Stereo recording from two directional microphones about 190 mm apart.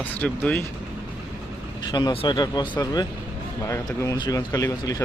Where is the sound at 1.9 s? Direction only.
25° left (ahead or behind).